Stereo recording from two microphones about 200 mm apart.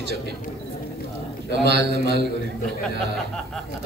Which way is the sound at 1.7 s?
55° right (ahead or behind).